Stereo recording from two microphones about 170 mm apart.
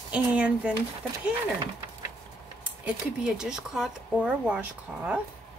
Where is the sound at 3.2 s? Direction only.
5° right (ahead or behind).